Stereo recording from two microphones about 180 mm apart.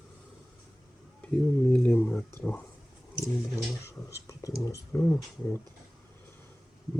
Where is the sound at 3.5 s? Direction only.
15° left (ahead or behind).